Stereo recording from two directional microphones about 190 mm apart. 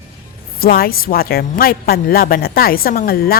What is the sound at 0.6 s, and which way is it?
A woman's voice, 50° left (ahead or behind).